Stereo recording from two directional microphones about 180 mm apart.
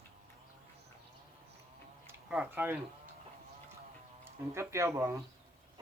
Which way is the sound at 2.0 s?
10° right (ahead or behind).